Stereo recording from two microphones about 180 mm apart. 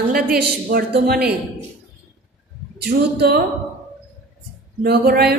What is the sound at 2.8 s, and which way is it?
Speech, 65° right (ahead or behind).